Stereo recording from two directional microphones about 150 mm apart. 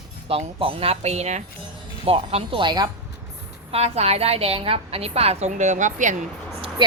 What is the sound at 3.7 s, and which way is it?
A woman's voice, 40° right (ahead or behind).